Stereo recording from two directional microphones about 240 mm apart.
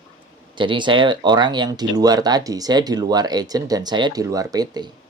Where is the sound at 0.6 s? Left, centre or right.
Centre.